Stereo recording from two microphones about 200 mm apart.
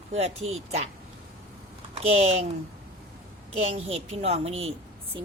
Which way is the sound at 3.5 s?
30° right (ahead or behind).